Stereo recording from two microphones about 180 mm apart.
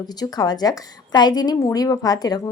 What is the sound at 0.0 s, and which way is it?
A woman's voice, 20° left (ahead or behind).